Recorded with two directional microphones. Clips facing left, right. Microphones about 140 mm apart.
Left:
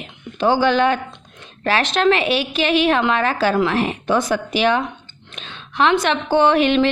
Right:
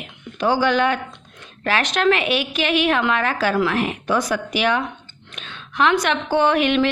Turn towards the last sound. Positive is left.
turn(degrees=30)  # may be behind; listen again after turning